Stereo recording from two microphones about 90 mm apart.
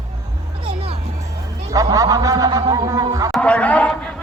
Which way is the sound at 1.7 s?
40° right (ahead or behind).